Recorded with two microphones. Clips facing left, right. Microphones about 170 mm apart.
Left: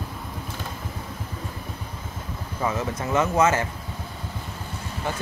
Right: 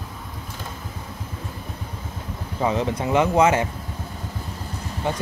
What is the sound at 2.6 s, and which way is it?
Speech, 20° right (ahead or behind).